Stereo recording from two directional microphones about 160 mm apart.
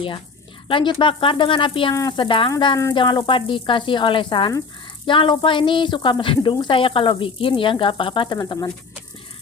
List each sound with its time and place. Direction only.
0.7 s speech: 30° left (ahead or behind)
2.5 s sizzle: 25° left (ahead or behind)
2.9 s speech: 30° left (ahead or behind)